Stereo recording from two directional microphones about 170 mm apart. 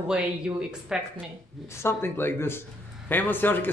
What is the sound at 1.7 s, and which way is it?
Speech, 15° left (ahead or behind).